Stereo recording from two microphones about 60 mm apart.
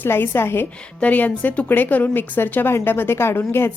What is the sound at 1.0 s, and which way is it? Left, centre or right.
A woman's voice, left.